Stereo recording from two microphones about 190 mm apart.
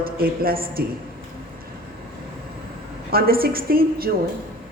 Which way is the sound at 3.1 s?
50° right (ahead or behind).